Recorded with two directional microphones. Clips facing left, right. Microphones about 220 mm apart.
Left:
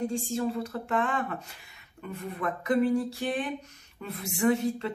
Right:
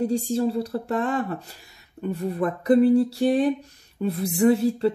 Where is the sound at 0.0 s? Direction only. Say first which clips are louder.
Right 7 dB; 35° right (ahead or behind).